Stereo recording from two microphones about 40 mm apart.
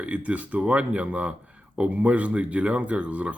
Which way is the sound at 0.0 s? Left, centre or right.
Right.